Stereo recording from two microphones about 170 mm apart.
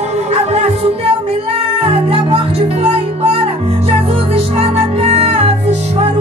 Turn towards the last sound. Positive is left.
turn(degrees=-40)  # may be behind; listen again after turning